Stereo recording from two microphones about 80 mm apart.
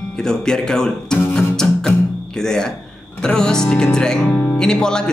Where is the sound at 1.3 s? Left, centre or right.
Centre.